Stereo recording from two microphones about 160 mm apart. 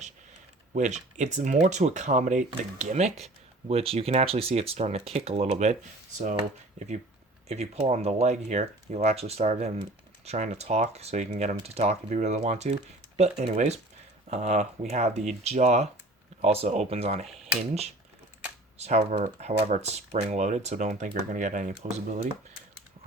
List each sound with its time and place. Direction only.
0.7 s speech: 45° right (ahead or behind)
6.7 s speech: 45° right (ahead or behind)
18.8 s speech: 40° right (ahead or behind)